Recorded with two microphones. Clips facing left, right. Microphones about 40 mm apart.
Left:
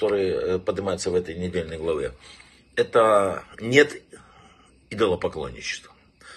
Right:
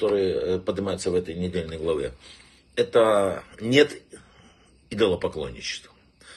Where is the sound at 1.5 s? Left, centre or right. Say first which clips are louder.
Left 2 dB; left.